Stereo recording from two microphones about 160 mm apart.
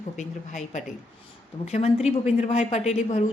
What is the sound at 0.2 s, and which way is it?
A woman's voice, 50° left (ahead or behind).